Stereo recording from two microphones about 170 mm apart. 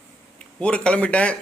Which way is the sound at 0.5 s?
5° left (ahead or behind).